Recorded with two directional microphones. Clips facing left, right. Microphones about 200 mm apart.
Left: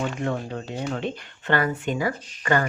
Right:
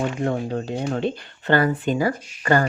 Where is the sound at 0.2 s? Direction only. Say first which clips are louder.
Right 4 dB; 35° right (ahead or behind).